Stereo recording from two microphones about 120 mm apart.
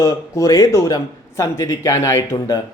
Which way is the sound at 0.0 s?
30° left (ahead or behind).